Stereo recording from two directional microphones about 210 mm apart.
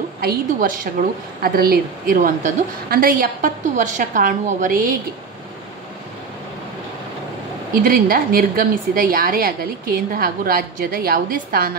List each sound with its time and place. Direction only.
0.2 s a woman's voice: 45° right (ahead or behind)
7.8 s a woman's voice: 45° right (ahead or behind)